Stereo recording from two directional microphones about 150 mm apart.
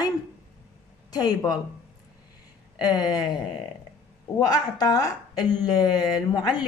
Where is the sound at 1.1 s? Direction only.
25° left (ahead or behind).